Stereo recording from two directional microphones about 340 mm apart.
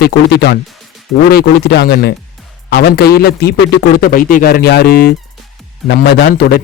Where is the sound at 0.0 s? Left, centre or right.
Left.